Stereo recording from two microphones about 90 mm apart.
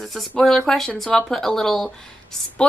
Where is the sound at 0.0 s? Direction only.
Centre (ahead or behind).